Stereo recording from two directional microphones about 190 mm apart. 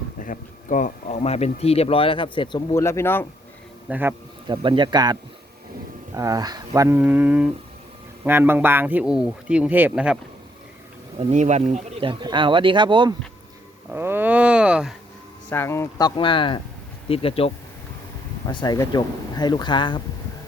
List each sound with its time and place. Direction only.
0.2 s speech: 45° left (ahead or behind); by 3.2 s 10° left (ahead or behind)
3.8 s a man's voice: 10° right (ahead or behind)
4.4 s speech: 25° right (ahead or behind)
6.1 s a man's voice: 20° right (ahead or behind)
11.2 s speech: 35° right (ahead or behind)
13.9 s speech: 10° right (ahead or behind)
15.4 s speech: 10° left (ahead or behind); by 17.5 s 30° left (ahead or behind)
18.4 s speech: 20° left (ahead or behind)